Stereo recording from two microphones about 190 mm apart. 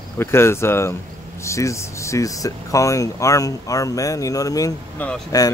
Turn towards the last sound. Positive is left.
turn(degrees=20)  # may be behind; listen again after turning